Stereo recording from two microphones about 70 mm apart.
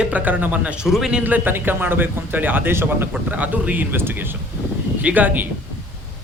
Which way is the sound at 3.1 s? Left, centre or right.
Right.